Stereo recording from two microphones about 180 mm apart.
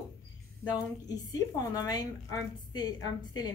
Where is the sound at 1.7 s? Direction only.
20° left (ahead or behind).